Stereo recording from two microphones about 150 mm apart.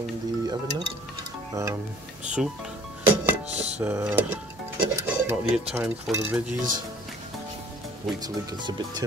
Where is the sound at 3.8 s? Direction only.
20° right (ahead or behind).